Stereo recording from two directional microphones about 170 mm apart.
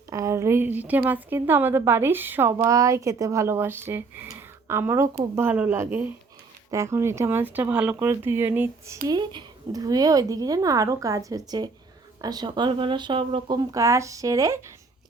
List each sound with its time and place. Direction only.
0.1 s a woman's voice: 20° right (ahead or behind)
9.0 s speech: 25° right (ahead or behind)
13.7 s a woman's voice: 15° right (ahead or behind)